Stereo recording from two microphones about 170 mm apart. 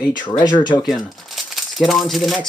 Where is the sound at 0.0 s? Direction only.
25° left (ahead or behind).